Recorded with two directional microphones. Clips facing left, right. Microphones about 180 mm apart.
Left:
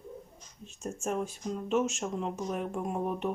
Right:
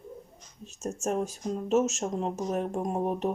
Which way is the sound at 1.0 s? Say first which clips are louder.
Right 3 dB; 40° right (ahead or behind).